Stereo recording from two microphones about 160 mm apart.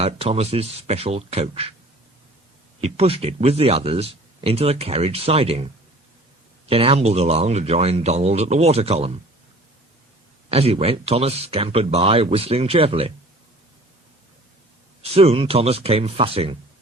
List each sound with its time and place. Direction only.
0.0 s speech: 40° right (ahead or behind)
2.8 s speech: 40° right (ahead or behind)
10.5 s speech: 40° right (ahead or behind)
15.1 s speech: 35° right (ahead or behind)